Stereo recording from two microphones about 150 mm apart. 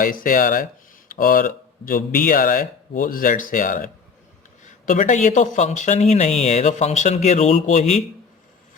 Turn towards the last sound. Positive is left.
turn(degrees=50)  # may be behind; listen again after turning